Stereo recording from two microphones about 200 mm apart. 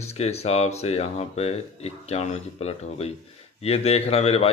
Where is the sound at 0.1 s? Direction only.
30° left (ahead or behind).